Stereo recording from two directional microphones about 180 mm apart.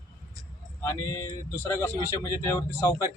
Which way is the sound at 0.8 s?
20° left (ahead or behind).